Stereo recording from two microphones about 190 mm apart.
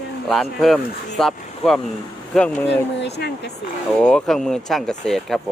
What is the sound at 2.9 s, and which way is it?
Speech, 60° left (ahead or behind).